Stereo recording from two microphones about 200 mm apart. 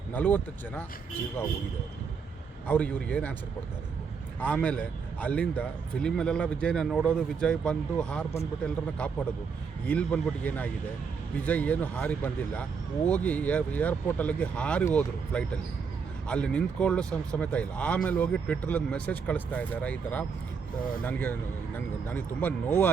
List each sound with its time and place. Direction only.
0.1 s speech: 10° left (ahead or behind)
2.6 s speech: 5° left (ahead or behind)
4.4 s speech: 5° left (ahead or behind)
9.8 s speech: 5° left (ahead or behind)